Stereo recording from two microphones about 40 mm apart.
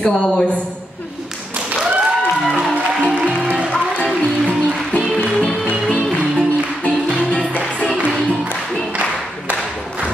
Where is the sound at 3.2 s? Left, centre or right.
Right.